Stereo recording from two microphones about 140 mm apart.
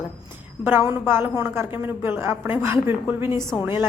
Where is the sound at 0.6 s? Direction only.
15° right (ahead or behind).